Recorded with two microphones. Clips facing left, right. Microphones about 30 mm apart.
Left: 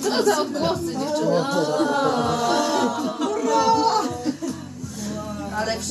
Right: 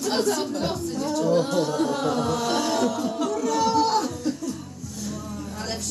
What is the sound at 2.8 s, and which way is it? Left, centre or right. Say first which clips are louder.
Chuckle: left 1 dB; left.